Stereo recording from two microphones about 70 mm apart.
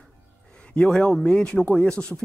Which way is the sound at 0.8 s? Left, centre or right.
Centre.